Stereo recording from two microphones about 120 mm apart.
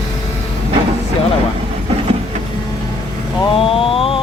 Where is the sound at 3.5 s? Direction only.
50° left (ahead or behind).